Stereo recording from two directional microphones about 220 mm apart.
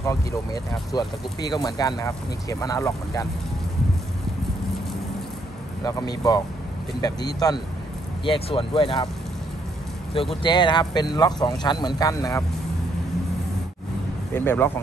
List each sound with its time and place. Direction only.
0.0 s speech: 15° left (ahead or behind)
5.9 s speech: 15° left (ahead or behind)
10.1 s speech: 25° left (ahead or behind)
14.3 s speech: 10° left (ahead or behind)